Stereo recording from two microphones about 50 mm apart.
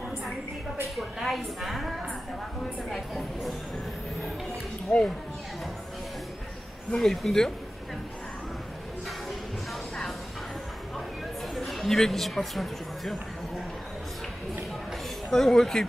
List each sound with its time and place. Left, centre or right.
0.8 s a woman's voice: centre
4.9 s speech: left
7.0 s speech: centre
9.3 s music: centre
11.5 s speech: centre
15.3 s speech: centre